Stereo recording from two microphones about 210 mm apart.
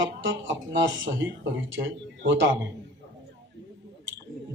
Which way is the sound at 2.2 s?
60° right (ahead or behind).